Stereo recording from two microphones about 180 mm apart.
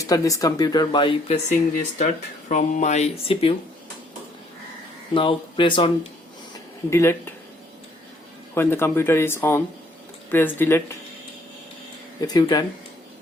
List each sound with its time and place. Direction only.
0.0 s speech: 20° left (ahead or behind)
1.5 s speech: 40° left (ahead or behind)
5.1 s speech: 30° left (ahead or behind)
6.9 s speech: 15° left (ahead or behind)
8.5 s speech: 15° left (ahead or behind)
12.2 s speech: 20° left (ahead or behind)